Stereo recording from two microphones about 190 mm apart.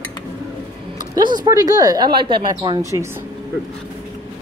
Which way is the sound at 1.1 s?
20° right (ahead or behind).